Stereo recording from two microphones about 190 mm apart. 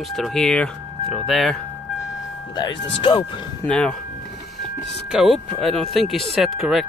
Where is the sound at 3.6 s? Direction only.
5° left (ahead or behind).